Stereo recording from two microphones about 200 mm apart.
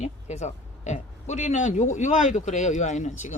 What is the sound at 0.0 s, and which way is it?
Speech, 35° left (ahead or behind).